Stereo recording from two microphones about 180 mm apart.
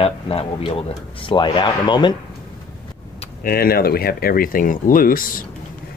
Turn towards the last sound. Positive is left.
turn(degrees=50)  # may be behind; listen again after turning